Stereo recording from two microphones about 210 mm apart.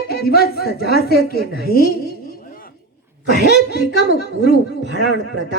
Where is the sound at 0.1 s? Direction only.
45° left (ahead or behind).